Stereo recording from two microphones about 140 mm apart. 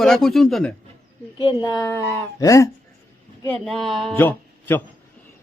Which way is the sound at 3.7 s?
Centre (ahead or behind).